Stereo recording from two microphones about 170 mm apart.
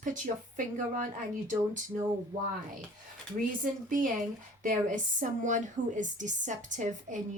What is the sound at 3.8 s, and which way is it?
A woman's voice, 50° right (ahead or behind).